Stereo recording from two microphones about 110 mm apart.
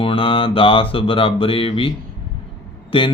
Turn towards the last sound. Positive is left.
turn(degrees=55)  # may be behind; listen again after turning